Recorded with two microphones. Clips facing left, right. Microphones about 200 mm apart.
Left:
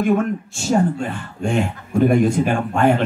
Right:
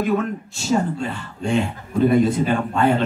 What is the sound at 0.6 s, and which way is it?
Speech, 50° left (ahead or behind).